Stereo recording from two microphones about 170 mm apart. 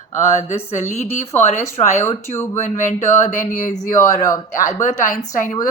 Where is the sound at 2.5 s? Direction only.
45° left (ahead or behind).